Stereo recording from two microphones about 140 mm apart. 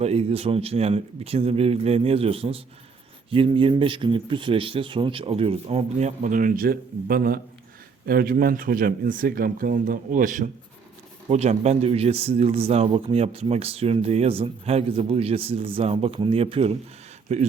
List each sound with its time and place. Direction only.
0.0 s speech: 50° right (ahead or behind); by 10.5 s 70° right (ahead or behind)
11.3 s speech: 50° right (ahead or behind)